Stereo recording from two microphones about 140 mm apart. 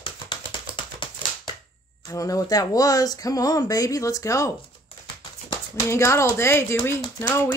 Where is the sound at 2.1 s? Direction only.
25° left (ahead or behind).